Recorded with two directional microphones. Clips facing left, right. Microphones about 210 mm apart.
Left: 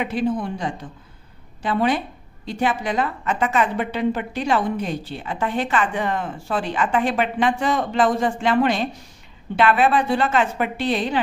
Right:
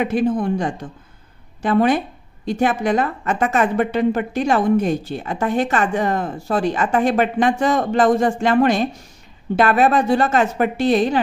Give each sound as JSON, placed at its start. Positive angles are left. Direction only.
{"t": 0.0, "sound": "a woman's voice", "side_deg": -45}